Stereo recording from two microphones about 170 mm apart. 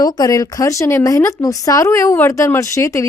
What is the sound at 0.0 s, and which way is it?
A woman's voice, 20° left (ahead or behind).